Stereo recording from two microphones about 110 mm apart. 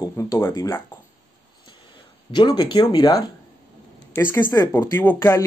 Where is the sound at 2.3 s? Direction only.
40° left (ahead or behind).